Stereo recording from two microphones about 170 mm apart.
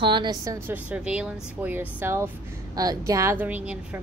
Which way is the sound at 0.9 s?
5° right (ahead or behind).